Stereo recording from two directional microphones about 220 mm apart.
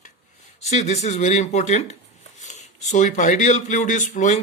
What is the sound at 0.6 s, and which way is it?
Speech, 30° left (ahead or behind).